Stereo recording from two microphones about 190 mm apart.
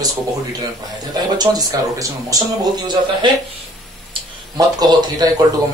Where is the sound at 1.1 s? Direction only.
20° right (ahead or behind).